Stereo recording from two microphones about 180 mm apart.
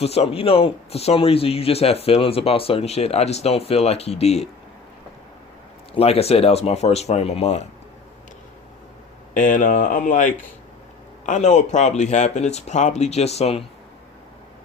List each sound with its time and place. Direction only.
0.0 s a man's voice: 35° left (ahead or behind)
5.9 s a man's voice: 35° left (ahead or behind)
9.3 s a man's voice: 45° left (ahead or behind)